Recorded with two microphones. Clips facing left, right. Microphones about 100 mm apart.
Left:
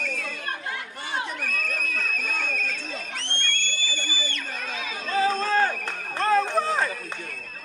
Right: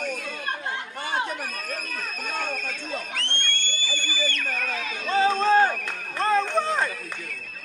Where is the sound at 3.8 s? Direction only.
10° left (ahead or behind).